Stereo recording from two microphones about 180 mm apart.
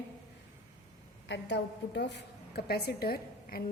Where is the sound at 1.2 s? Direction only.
80° left.